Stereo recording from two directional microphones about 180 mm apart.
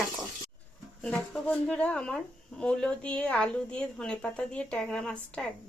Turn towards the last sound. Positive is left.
turn(degrees=5)  # may be behind; listen again after turning